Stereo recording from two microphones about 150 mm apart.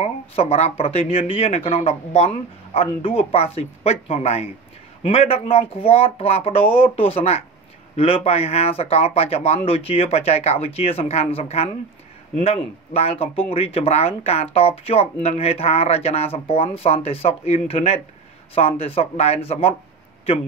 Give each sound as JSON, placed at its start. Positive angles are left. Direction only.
{"t": 0.0, "sound": "speech", "side_deg": 45}
{"t": 12.9, "sound": "speech", "side_deg": 45}